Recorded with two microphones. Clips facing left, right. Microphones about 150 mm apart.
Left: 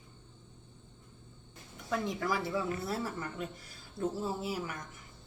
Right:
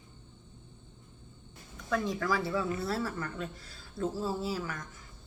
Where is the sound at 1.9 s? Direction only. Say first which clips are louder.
Right 2 dB; 20° left (ahead or behind).